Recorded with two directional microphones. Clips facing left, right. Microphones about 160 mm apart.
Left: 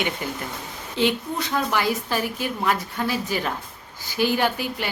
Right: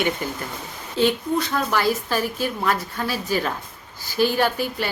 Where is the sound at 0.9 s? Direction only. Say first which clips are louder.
Right 3 dB; 20° left (ahead or behind).